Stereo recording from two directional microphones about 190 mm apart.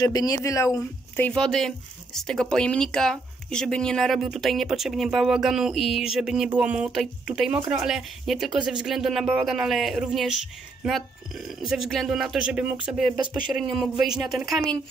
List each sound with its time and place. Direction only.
0.0 s speech: 20° left (ahead or behind); by 14.8 s centre (ahead or behind)